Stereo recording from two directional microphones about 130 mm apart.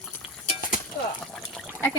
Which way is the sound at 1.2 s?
Centre (ahead or behind).